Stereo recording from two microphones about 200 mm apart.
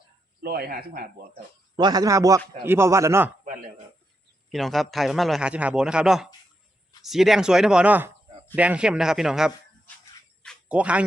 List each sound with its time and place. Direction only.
0.4 s speech: 50° right (ahead or behind)
1.7 s a man's voice: 20° right (ahead or behind)
4.4 s a man's voice: centre (ahead or behind)
10.4 s a sound: centre (ahead or behind)